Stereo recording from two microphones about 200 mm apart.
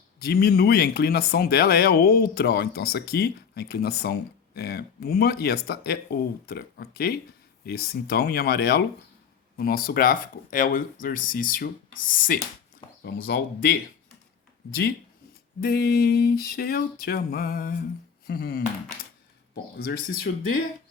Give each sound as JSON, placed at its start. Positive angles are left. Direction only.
{"t": 0.2, "sound": "speech", "side_deg": 50}
{"t": 13.0, "sound": "speech", "side_deg": 55}
{"t": 19.7, "sound": "speech", "side_deg": 50}